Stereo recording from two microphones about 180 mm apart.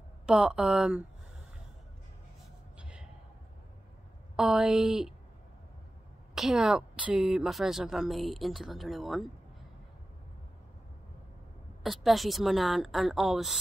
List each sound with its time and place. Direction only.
0.3 s a woman's voice: 5° right (ahead or behind)
2.8 s a sound: 5° right (ahead or behind)
4.4 s a woman's voice: 5° right (ahead or behind)
6.3 s a woman's voice: 5° right (ahead or behind)
11.8 s a woman's voice: centre (ahead or behind)